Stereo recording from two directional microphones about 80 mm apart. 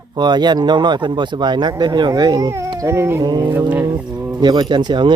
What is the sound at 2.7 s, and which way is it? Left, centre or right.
Speech, right.